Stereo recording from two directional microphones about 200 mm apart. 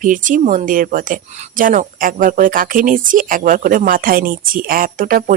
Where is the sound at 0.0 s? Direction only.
40° right (ahead or behind).